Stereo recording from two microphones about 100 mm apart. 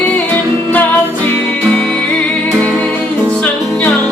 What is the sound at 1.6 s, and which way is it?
Music, 10° left (ahead or behind).